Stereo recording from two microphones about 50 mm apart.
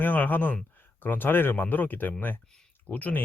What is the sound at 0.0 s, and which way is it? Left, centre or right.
Speech, left.